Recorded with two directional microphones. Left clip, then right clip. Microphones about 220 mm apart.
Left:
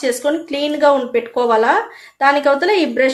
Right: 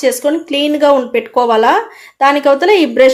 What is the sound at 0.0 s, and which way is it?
Speech, 30° right (ahead or behind).